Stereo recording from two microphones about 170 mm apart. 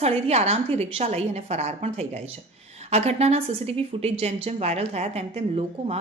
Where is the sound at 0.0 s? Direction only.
40° right (ahead or behind).